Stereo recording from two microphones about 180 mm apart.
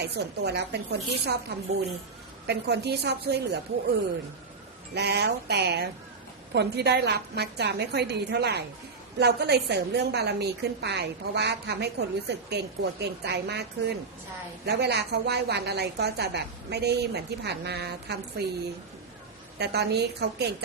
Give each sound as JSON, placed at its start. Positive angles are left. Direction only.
{"t": 0.0, "sound": "a woman's voice", "side_deg": -70}
{"t": 4.9, "sound": "a woman's voice", "side_deg": -65}
{"t": 19.5, "sound": "a woman's voice", "side_deg": -65}